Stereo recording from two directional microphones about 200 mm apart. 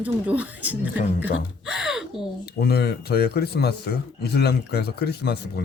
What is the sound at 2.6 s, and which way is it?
Speech, 55° left (ahead or behind).